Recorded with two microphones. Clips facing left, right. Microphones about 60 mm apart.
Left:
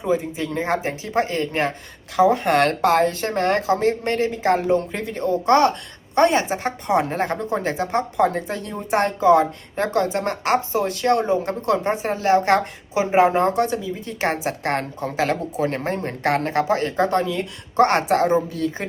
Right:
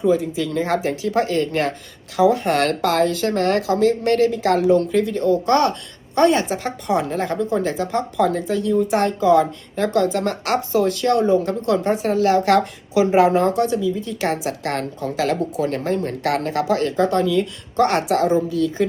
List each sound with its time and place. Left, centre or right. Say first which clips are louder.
0.1 s a woman's voice: right 3 dB; left